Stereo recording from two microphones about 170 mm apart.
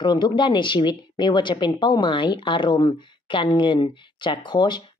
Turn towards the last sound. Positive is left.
turn(degrees=25)  # may be behind; listen again after turning